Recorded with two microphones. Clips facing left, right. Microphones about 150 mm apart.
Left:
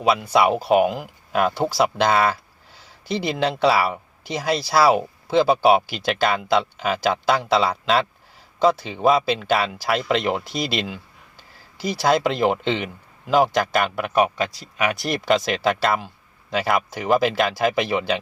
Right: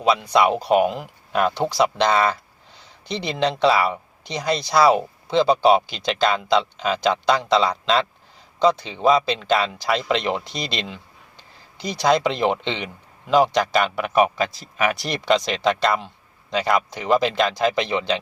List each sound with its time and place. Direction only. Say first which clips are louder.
0.0 s speech: even; 5° left (ahead or behind)